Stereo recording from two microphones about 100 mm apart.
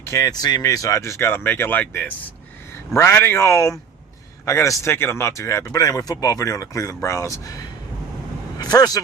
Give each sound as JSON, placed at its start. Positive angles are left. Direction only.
{"t": 0.0, "sound": "speech", "side_deg": 30}
{"t": 0.3, "sound": "speech", "side_deg": 40}